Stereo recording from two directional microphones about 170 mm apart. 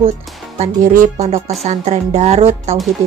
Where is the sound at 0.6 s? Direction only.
50° right (ahead or behind).